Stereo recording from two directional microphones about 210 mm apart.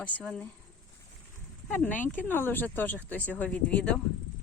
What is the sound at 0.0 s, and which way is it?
Speech, 5° left (ahead or behind).